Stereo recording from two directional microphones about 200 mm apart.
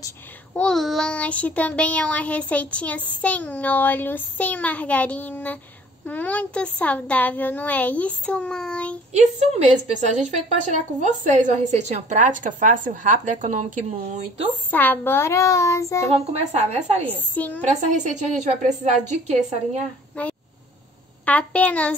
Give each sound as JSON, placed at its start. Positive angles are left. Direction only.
{"t": 0.6, "sound": "speech", "side_deg": 5}
{"t": 9.1, "sound": "a woman's voice", "side_deg": -35}
{"t": 14.7, "sound": "speech", "side_deg": 10}
{"t": 16.3, "sound": "a woman's voice", "side_deg": -30}
{"t": 17.0, "sound": "speech", "side_deg": 10}
{"t": 17.6, "sound": "a woman's voice", "side_deg": -35}
{"t": 20.2, "sound": "speech", "side_deg": 5}